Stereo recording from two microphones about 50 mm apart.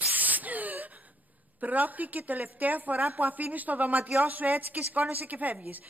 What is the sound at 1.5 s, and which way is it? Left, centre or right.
A man's voice, right.